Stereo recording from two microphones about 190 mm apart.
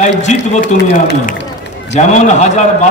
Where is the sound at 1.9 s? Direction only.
40° left (ahead or behind).